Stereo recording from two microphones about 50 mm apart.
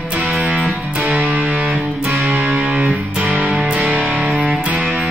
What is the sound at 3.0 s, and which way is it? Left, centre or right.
Music, centre.